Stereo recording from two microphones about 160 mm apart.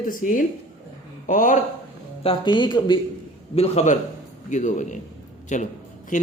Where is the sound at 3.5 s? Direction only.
40° left (ahead or behind).